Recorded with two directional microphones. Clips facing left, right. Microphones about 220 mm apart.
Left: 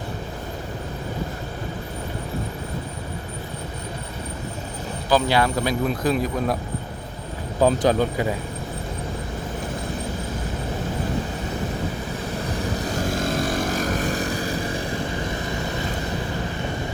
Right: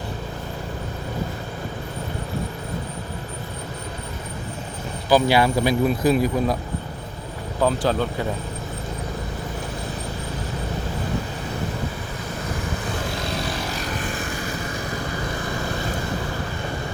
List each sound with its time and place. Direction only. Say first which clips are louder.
5.1 s speech: right 2 dB; 10° right (ahead or behind)
7.6 s speech: left 3 dB; 15° left (ahead or behind)
13.1 s vehicle: left 4 dB; 45° left (ahead or behind); by 15.0 s 30° left (ahead or behind)